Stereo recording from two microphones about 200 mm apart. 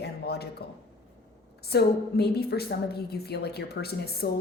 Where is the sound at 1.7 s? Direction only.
55° left (ahead or behind).